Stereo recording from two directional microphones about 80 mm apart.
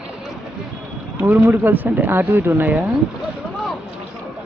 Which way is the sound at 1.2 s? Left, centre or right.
Centre.